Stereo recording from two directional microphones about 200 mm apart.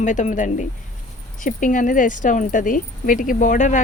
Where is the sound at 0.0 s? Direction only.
40° left (ahead or behind).